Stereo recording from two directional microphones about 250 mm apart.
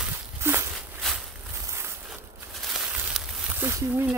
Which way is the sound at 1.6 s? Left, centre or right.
Centre.